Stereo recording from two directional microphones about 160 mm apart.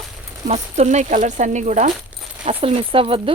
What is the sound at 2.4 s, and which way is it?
Speech, 35° right (ahead or behind).